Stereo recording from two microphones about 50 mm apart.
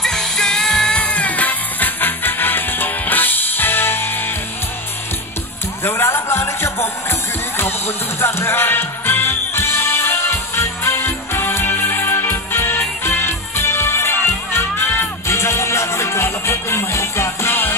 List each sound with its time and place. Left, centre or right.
0.0 s music: centre
1.0 s music: left
5.9 s music: left
15.2 s music: left